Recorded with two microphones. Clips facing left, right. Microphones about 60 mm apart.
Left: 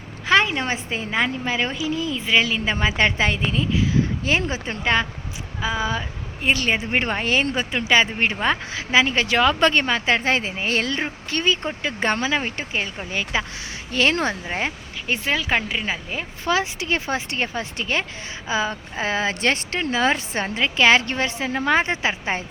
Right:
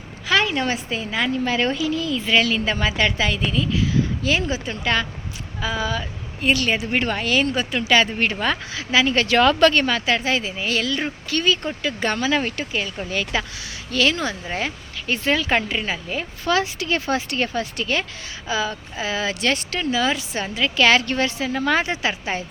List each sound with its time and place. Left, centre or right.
0.3 s a sound: left
0.5 s a woman's voice: left
1.5 s a woman's voice: centre; by 11.0 s left
11.0 s a woman's voice: left
13.9 s speech: left
14.4 s a woman's voice: left
20.7 s a woman's voice: left